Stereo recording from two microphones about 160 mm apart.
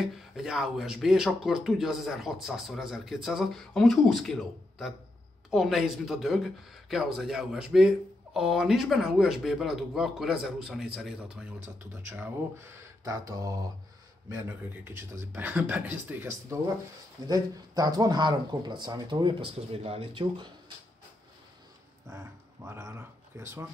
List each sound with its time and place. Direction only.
0.0 s speech: centre (ahead or behind); by 13.6 s 20° right (ahead or behind)
14.9 s speech: 15° right (ahead or behind)
22.1 s speech: 15° right (ahead or behind)